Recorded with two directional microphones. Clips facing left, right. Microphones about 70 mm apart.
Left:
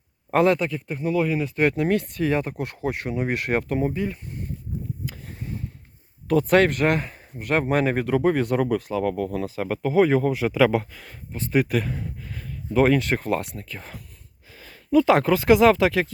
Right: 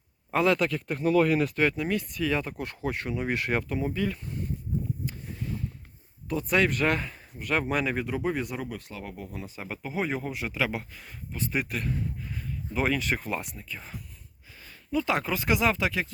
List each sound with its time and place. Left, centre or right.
0.3 s speech: left
0.7 s speech: centre
1.5 s speech: left
3.6 s speech: left
3.9 s speech: left
6.7 s speech: left
8.0 s speech: left
11.7 s a sound: left
12.8 s speech: left
14.6 s speech: left